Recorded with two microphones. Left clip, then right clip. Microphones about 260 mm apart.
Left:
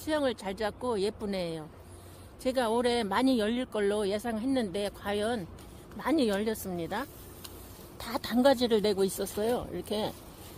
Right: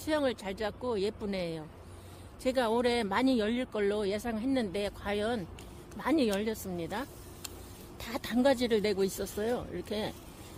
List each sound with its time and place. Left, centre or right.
0.0 s speech: centre